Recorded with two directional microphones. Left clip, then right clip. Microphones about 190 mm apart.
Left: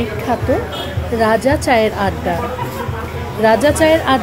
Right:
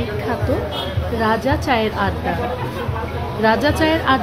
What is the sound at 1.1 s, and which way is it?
Speech, 15° left (ahead or behind).